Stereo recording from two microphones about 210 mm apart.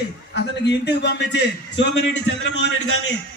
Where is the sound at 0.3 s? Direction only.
55° left (ahead or behind).